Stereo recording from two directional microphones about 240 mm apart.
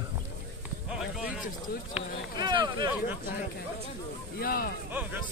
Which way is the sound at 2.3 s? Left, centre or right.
Centre.